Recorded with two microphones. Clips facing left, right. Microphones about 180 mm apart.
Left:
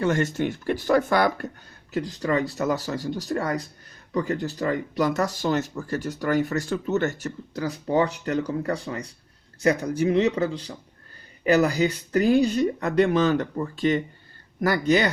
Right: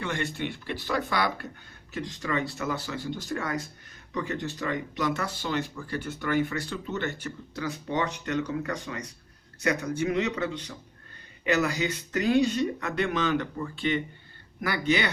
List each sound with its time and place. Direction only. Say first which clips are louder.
0.0 s speech: left 8 dB; 40° left (ahead or behind)
1.9 s speech: left 6 dB; 35° left (ahead or behind)